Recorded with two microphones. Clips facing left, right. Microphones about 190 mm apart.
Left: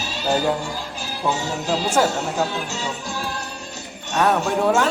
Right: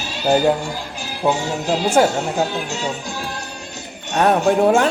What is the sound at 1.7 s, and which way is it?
Music, 30° right (ahead or behind).